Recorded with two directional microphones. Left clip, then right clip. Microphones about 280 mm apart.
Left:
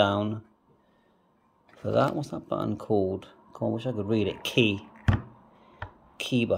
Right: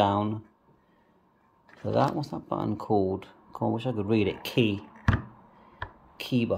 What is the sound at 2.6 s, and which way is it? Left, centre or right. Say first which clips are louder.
Speech: right 1 dB; centre.